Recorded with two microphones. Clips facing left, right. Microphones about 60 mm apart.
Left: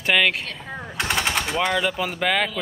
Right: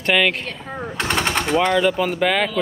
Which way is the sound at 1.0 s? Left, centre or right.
Centre.